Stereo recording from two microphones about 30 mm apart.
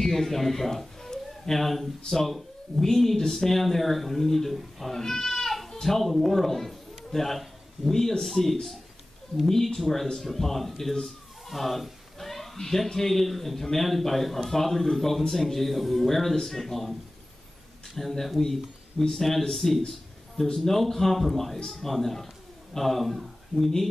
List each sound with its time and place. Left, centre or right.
0.0 s a man's voice: centre
5.0 s goat: centre
6.2 s a man's voice: centre
8.2 s speech: centre
9.8 s speech: centre
17.9 s a man's voice: centre